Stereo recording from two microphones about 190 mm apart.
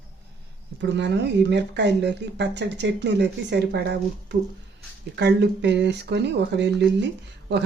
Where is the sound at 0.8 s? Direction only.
65° right (ahead or behind).